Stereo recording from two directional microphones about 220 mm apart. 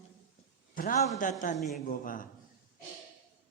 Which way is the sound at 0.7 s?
40° left (ahead or behind).